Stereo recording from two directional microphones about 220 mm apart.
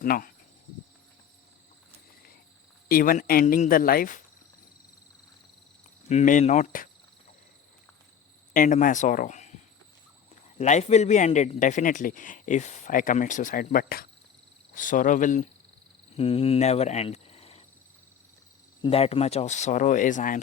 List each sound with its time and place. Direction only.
0.0 s speech: 40° left (ahead or behind)
2.9 s a man's voice: 40° left (ahead or behind)
6.1 s a man's voice: 35° left (ahead or behind)
8.5 s speech: 40° left (ahead or behind)
10.6 s a man's voice: 30° left (ahead or behind)
18.8 s a man's voice: 25° left (ahead or behind)